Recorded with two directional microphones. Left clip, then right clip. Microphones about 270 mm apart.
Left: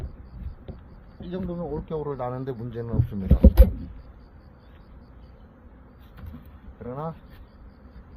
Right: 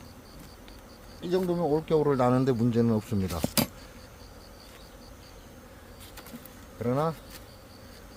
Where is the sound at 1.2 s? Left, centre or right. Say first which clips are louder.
Right 6 dB; centre.